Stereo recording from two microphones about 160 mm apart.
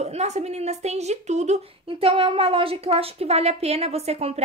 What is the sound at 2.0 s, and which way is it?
A woman's voice, 35° right (ahead or behind).